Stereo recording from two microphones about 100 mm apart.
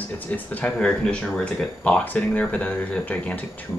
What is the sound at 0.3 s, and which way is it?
Speech, 15° left (ahead or behind).